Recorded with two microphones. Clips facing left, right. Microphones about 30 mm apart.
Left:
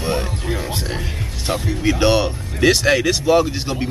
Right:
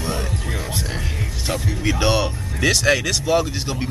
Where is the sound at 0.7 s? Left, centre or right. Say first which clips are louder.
Left 2 dB; left.